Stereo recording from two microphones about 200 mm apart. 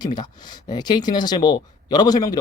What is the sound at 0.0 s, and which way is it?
Speech, 20° left (ahead or behind).